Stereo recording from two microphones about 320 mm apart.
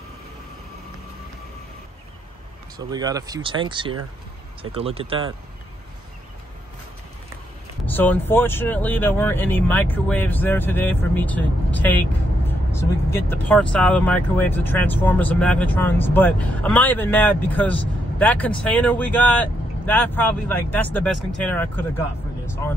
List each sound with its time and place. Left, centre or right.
2.9 s speech: centre
7.8 s speech: centre